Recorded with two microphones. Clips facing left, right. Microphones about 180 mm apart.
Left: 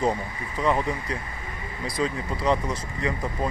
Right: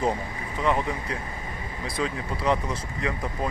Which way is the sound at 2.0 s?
Centre (ahead or behind).